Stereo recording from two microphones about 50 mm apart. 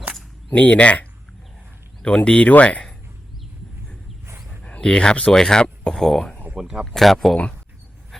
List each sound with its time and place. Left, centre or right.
0.5 s speech: left
4.6 s speech: left; by 7.3 s centre
8.1 s a sound: centre